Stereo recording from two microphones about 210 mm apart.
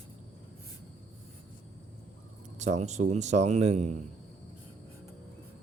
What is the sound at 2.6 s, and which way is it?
A man's voice, 35° right (ahead or behind).